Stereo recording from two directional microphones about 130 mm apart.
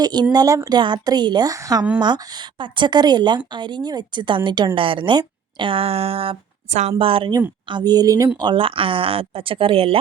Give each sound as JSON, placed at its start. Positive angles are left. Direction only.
{"t": 0.0, "sound": "a woman's voice", "side_deg": -30}
{"t": 7.0, "sound": "a woman's voice", "side_deg": -45}
{"t": 8.4, "sound": "speech", "side_deg": -40}